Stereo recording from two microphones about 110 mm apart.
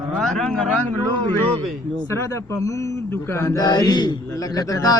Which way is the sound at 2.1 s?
25° left (ahead or behind).